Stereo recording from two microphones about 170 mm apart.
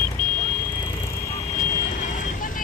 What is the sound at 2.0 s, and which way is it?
Vehicle, 50° left (ahead or behind).